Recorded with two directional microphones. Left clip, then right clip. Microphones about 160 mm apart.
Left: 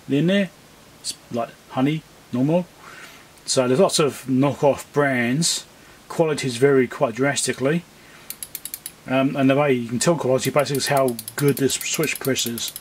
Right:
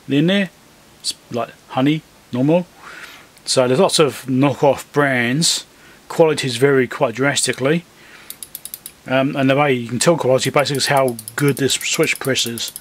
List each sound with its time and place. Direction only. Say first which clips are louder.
0.1 s speech: right 3 dB; 20° right (ahead or behind)
9.0 s speech: right 3 dB; 20° right (ahead or behind)